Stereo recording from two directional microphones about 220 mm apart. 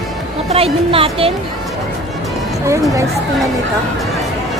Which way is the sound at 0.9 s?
25° right (ahead or behind).